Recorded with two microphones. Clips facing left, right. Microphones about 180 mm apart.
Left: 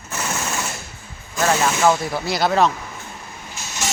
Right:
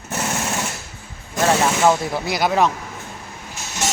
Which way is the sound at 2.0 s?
20° right (ahead or behind).